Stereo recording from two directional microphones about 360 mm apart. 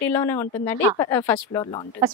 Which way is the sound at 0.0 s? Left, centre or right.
Centre.